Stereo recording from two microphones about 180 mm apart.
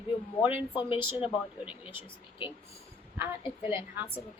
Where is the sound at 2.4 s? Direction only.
30° left (ahead or behind).